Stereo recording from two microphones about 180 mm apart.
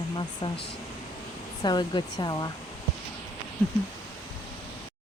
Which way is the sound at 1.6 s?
25° left (ahead or behind).